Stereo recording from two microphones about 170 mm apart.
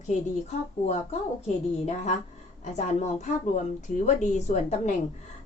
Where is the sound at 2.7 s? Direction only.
45° left (ahead or behind).